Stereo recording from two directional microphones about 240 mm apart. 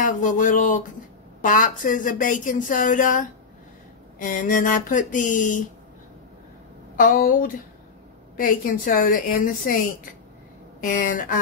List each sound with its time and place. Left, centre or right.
0.0 s speech: left
7.0 s speech: left
10.8 s speech: left